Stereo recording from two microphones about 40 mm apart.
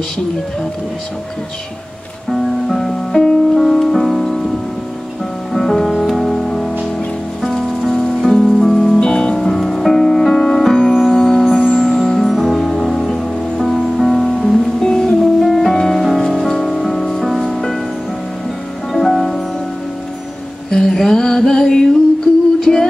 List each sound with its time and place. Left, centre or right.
2.2 s music: centre
5.5 s music: centre
5.9 s music: centre
6.1 s music: centre
8.9 s music: left
9.5 s music: centre
15.4 s music: centre
18.9 s music: centre
20.7 s a sound: centre
22.7 s music: centre